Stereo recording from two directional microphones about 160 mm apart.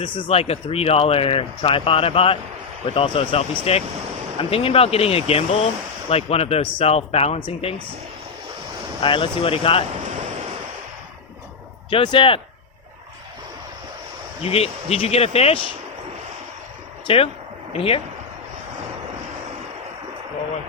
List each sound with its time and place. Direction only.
0.0 s speech: 30° left (ahead or behind)
9.0 s speech: 30° left (ahead or behind)
11.9 s speech: 30° left (ahead or behind)
14.4 s speech: 40° left (ahead or behind)
17.1 s speech: 35° left (ahead or behind)